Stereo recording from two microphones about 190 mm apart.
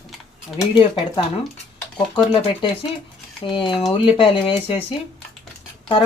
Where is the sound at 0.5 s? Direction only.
25° left (ahead or behind).